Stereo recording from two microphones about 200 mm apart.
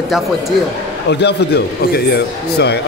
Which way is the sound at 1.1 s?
55° left (ahead or behind).